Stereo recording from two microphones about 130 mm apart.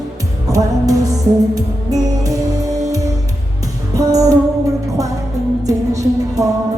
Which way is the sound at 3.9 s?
25° right (ahead or behind).